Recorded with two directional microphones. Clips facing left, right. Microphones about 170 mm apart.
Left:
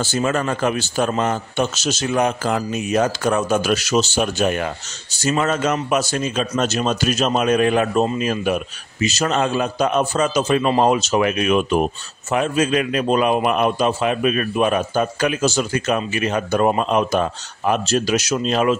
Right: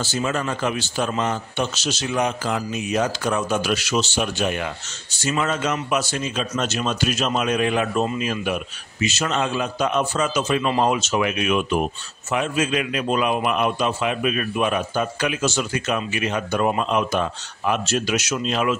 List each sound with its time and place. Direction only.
0.0 s speech: 50° left (ahead or behind)